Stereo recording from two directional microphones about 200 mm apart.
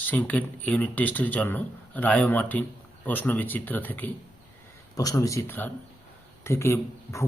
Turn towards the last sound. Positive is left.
turn(degrees=15)  # may be behind; listen again after turning